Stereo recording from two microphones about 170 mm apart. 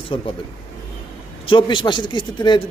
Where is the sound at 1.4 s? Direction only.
30° left (ahead or behind).